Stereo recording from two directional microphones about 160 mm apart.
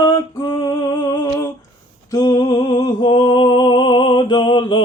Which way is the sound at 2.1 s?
25° left (ahead or behind).